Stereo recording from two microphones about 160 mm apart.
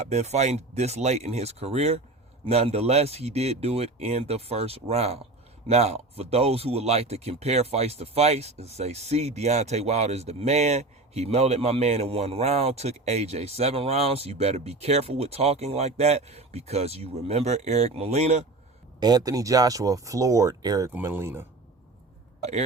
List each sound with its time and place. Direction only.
0.0 s speech: 45° right (ahead or behind)
18.9 s speech: 25° right (ahead or behind)
22.4 s speech: 45° right (ahead or behind)